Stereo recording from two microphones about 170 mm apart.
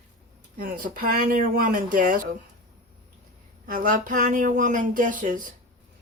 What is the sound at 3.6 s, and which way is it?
Speech, 55° right (ahead or behind).